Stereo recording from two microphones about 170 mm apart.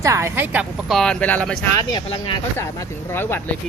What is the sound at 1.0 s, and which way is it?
Speech, 5° left (ahead or behind).